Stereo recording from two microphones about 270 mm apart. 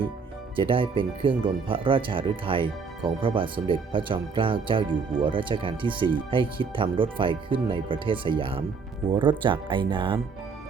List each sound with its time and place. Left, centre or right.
0.5 s speech: centre